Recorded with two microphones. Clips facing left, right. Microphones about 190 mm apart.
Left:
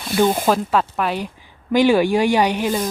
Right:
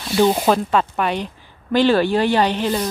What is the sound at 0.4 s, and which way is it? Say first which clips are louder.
Speech: right 1 dB; 5° left (ahead or behind).